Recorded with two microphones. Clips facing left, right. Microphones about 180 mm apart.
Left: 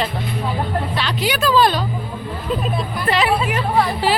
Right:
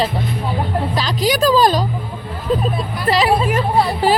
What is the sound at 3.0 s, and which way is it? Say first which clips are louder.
Speech: right 3 dB; 35° right (ahead or behind).